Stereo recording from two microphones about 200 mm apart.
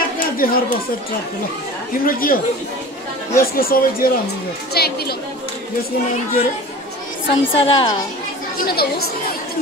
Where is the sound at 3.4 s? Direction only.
45° left (ahead or behind).